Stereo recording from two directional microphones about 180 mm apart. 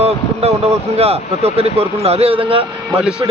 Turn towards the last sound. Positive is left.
turn(degrees=-25)  # may be behind; listen again after turning